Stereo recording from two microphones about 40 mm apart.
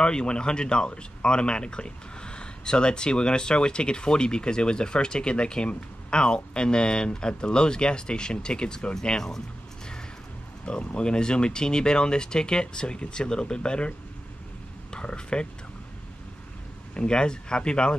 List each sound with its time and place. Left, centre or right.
0.0 s speech: left
10.6 s speech: left
16.9 s speech: left